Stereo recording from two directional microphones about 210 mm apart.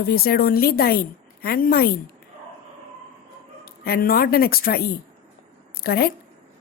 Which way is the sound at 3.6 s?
45° left (ahead or behind).